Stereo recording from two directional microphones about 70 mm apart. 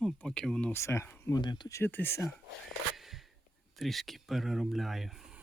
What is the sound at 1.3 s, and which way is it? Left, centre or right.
Speech, left.